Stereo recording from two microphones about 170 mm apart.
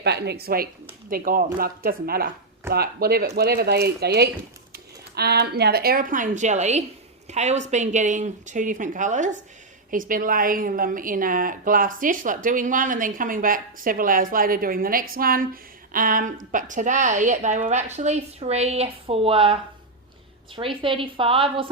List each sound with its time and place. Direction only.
0.0 s a woman's voice: 80° right; by 19.5 s 35° right (ahead or behind)
20.8 s a woman's voice: 30° right (ahead or behind)